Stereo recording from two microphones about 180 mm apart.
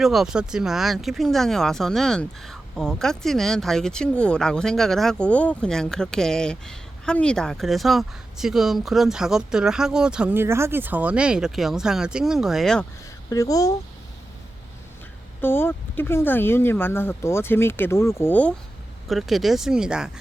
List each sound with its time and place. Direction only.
0.0 s speech: centre (ahead or behind)
13.3 s speech: 20° left (ahead or behind)
15.4 s speech: 10° left (ahead or behind)
19.0 s speech: centre (ahead or behind)